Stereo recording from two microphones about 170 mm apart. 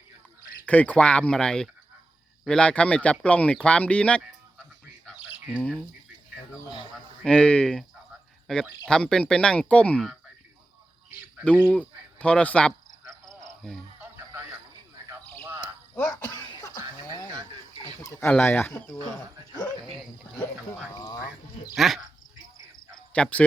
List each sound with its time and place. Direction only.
0.6 s speech: 10° left (ahead or behind)
5.0 s bird: 5° right (ahead or behind)
5.6 s speech: 5° left (ahead or behind)
7.3 s speech: 5° left (ahead or behind)
11.6 s cricket: 5° left (ahead or behind)
14.0 s music: 10° right (ahead or behind)
16.3 s cough: 25° left (ahead or behind)
18.0 s speech: 15° left (ahead or behind)
19.6 s a sound: centre (ahead or behind)
20.9 s a sound: 20° left (ahead or behind)
21.8 s speech: centre (ahead or behind)
22.9 s cricket: 5° left (ahead or behind)